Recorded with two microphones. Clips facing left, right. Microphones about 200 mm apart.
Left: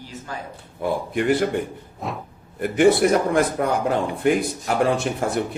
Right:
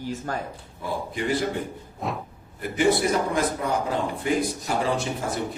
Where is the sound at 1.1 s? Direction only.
60° left (ahead or behind).